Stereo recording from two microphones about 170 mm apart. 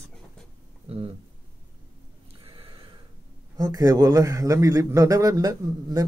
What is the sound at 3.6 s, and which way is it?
A man's voice, 20° right (ahead or behind).